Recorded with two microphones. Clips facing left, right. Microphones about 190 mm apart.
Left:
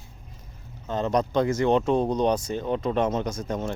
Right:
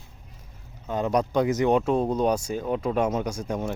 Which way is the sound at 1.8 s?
5° right (ahead or behind).